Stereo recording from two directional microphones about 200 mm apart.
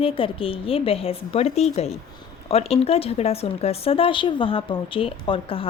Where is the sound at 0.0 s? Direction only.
25° left (ahead or behind).